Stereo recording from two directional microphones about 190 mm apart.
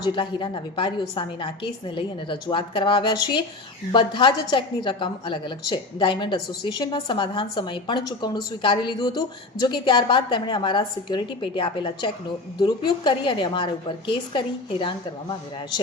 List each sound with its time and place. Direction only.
0.0 s a woman's voice: 25° left (ahead or behind)